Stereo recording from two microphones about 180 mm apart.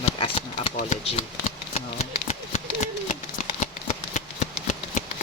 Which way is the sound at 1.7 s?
35° left (ahead or behind).